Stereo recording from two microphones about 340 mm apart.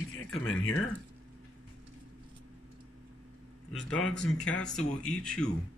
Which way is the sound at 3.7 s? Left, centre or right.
Centre.